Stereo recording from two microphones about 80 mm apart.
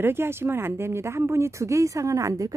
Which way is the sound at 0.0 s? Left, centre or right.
Right.